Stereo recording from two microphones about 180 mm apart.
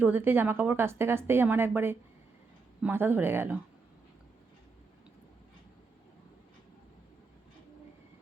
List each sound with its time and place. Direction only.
0.0 s speech: 10° right (ahead or behind)